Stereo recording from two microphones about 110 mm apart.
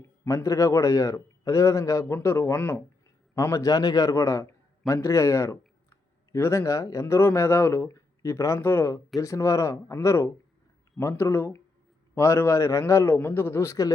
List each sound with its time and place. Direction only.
0.3 s a man's voice: 25° left (ahead or behind)